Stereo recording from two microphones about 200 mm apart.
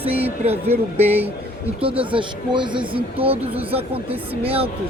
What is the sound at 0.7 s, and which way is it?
Speech, 10° right (ahead or behind).